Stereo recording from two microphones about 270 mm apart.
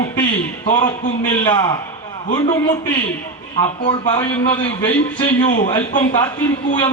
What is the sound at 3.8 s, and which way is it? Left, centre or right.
A man's voice, left.